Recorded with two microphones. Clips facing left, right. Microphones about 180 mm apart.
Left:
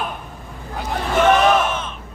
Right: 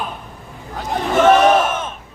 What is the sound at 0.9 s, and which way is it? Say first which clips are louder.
Speech: right 3 dB; 35° right (ahead or behind).